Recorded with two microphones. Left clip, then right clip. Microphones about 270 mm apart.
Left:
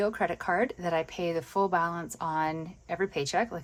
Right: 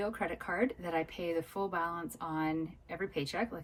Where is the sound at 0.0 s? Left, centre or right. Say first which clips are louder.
Left 8 dB; left.